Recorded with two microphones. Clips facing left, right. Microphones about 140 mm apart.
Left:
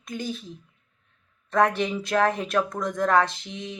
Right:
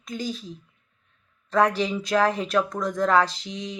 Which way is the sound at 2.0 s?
50° left (ahead or behind).